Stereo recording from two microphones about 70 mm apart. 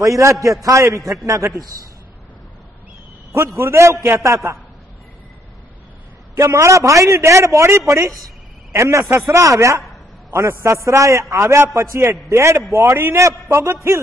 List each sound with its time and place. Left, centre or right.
0.0 s a man's voice: right
3.5 s a man's voice: right
6.3 s a man's voice: right